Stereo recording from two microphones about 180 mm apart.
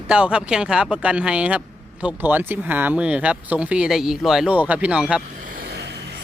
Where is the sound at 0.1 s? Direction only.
5° right (ahead or behind).